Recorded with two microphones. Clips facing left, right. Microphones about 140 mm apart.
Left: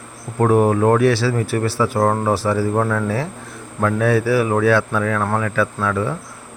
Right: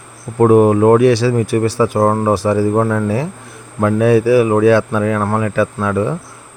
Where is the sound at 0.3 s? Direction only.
15° right (ahead or behind).